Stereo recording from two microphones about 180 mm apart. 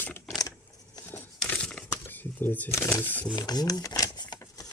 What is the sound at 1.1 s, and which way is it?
Crumpling, 5° left (ahead or behind).